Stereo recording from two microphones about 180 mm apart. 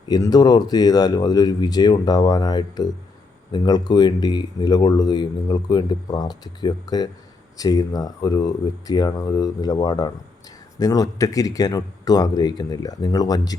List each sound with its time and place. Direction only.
0.1 s speech: 20° left (ahead or behind)